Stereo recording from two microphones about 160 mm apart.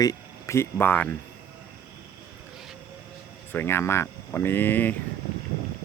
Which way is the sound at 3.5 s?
15° left (ahead or behind).